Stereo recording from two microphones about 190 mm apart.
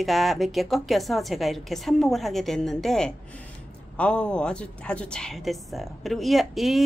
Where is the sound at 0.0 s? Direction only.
Centre (ahead or behind).